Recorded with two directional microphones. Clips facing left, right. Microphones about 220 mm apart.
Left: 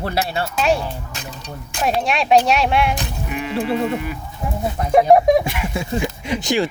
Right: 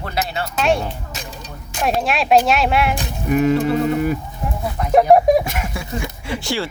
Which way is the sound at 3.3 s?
45° right (ahead or behind).